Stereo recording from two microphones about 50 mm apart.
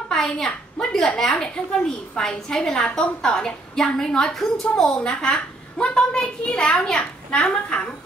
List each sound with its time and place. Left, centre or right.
0.1 s a woman's voice: centre